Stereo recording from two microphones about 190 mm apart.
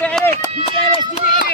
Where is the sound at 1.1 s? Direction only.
45° left (ahead or behind).